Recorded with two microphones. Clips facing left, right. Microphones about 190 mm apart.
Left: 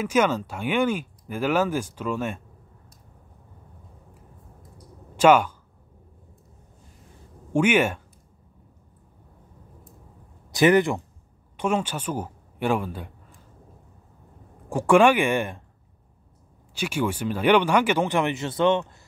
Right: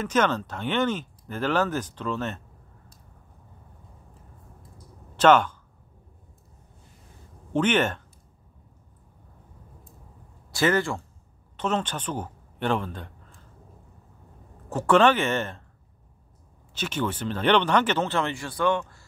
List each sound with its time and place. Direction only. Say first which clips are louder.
0.0 s speech: left 2 dB; 10° left (ahead or behind)
5.1 s speech: left 1 dB; 10° left (ahead or behind)
7.5 s speech: left 2 dB; 10° left (ahead or behind)
10.5 s speech: left 5 dB; 20° left (ahead or behind)
14.7 s speech: left 2 dB; 10° left (ahead or behind)
16.7 s speech: left 3 dB; 10° left (ahead or behind)